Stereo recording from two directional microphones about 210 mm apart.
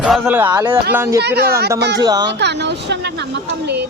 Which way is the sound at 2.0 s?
20° right (ahead or behind).